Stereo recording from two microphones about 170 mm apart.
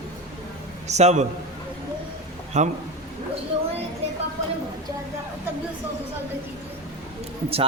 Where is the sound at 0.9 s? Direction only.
40° right (ahead or behind).